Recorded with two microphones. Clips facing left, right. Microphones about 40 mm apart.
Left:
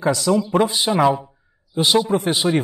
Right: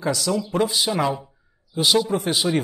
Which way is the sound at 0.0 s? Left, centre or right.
Centre.